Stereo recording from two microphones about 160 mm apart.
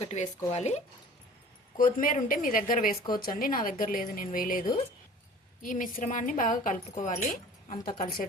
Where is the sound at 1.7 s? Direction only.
60° left (ahead or behind).